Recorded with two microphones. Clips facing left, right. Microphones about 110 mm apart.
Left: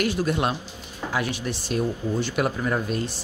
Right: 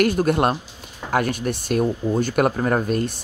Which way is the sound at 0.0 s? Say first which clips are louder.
Right 6 dB; 55° right (ahead or behind).